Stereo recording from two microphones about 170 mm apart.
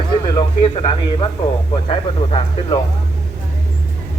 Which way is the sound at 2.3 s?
30° left (ahead or behind).